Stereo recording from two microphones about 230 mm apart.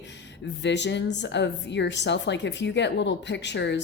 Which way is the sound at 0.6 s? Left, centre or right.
Left.